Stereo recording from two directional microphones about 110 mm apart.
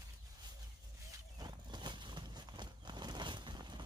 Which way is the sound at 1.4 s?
40° right (ahead or behind).